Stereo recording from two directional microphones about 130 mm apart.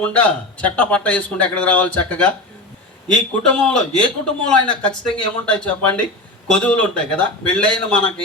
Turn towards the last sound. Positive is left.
turn(degrees=10)  # may be behind; listen again after turning